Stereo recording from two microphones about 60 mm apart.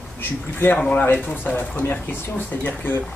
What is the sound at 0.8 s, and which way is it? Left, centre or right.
Speech, left.